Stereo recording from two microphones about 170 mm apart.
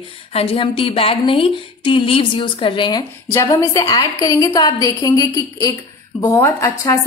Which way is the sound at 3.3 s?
15° left (ahead or behind).